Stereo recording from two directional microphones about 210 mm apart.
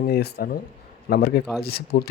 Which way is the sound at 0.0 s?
45° left (ahead or behind).